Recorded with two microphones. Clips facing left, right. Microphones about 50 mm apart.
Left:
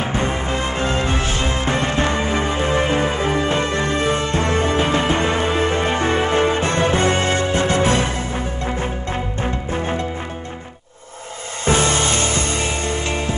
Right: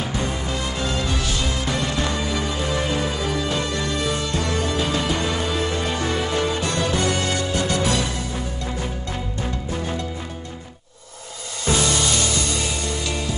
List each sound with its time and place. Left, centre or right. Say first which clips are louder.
0.0 s music: left 4 dB; left
11.6 s music: left 4 dB; left